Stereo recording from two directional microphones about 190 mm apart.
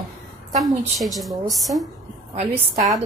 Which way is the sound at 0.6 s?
Centre (ahead or behind).